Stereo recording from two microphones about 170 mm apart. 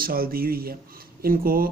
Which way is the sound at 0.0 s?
60° right (ahead or behind).